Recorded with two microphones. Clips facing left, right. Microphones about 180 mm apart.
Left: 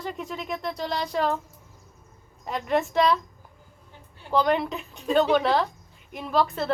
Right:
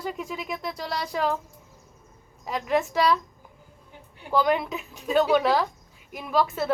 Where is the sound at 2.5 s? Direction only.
Centre (ahead or behind).